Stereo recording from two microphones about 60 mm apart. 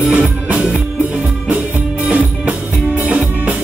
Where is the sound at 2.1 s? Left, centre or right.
Right.